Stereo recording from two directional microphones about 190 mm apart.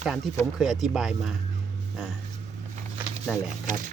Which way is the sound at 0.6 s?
Centre (ahead or behind).